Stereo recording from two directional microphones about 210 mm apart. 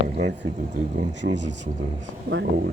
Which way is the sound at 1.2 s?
60° right (ahead or behind).